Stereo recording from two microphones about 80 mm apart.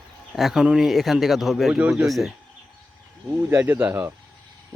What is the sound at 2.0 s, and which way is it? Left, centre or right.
Speech, centre.